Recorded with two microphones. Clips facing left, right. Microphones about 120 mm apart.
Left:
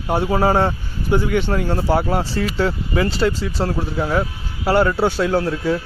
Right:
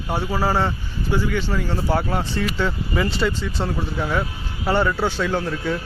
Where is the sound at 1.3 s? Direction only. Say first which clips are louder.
Left 5 dB; 55° left (ahead or behind).